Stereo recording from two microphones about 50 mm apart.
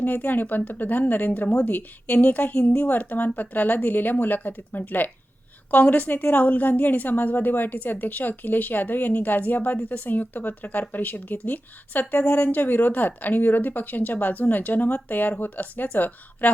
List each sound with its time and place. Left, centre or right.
0.0 s a woman's voice: left